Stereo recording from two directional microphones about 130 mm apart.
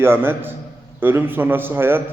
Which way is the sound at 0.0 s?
15° right (ahead or behind).